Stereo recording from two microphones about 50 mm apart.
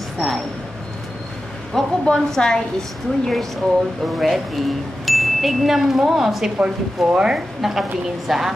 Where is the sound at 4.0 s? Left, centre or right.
Centre.